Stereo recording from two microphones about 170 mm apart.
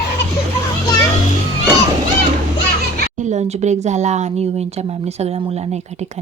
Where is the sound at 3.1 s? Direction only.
45° right (ahead or behind).